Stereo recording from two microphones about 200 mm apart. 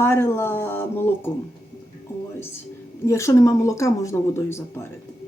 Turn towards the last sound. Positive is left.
turn(degrees=15)  # may be behind; listen again after turning